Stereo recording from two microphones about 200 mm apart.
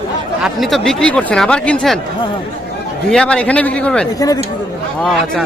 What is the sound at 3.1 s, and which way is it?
Speech, 5° left (ahead or behind).